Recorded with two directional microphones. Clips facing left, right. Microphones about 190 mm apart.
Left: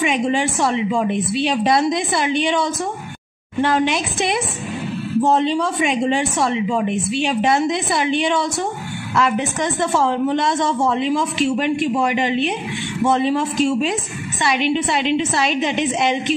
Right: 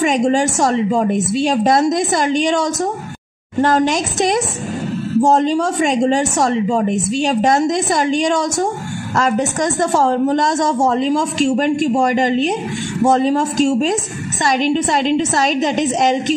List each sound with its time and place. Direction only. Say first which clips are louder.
0.0 s a woman's voice: right 4 dB; 40° right (ahead or behind)